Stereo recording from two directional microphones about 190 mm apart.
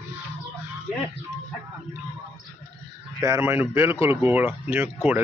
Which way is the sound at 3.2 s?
15° right (ahead or behind).